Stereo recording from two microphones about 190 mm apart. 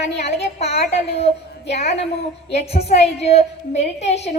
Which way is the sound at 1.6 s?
60° left (ahead or behind).